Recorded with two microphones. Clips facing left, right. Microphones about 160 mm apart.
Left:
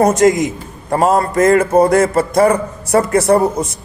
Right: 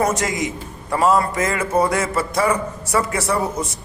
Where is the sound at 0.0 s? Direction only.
40° left (ahead or behind).